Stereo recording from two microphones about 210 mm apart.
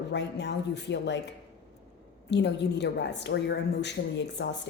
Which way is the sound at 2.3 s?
55° left (ahead or behind).